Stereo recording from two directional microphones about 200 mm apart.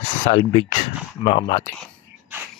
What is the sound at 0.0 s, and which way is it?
Speech, 35° left (ahead or behind).